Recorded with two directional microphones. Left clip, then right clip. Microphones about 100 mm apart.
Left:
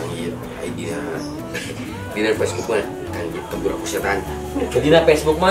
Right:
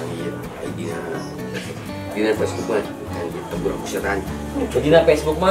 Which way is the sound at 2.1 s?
5° left (ahead or behind).